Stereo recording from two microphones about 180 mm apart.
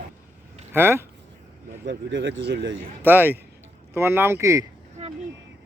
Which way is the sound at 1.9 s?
90° right.